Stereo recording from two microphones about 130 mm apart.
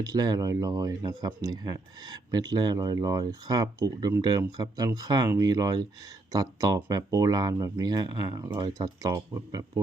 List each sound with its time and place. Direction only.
0.0 s speech: 30° right (ahead or behind)